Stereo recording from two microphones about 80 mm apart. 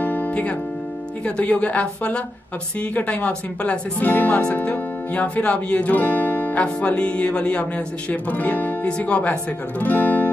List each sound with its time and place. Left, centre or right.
0.0 s music: left
1.2 s a woman's voice: centre